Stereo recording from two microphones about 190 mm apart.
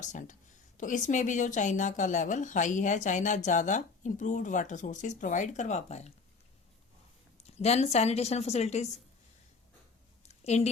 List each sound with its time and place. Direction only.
0.0 s a woman's voice: 40° left (ahead or behind)
7.4 s a woman's voice: 35° left (ahead or behind)
10.2 s a sound: 35° left (ahead or behind)